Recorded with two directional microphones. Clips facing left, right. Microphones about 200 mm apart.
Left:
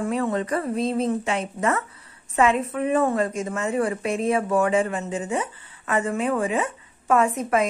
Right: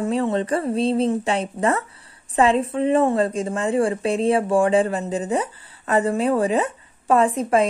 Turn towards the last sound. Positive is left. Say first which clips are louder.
# right 3 dB
turn(degrees=-30)  # may be behind; listen again after turning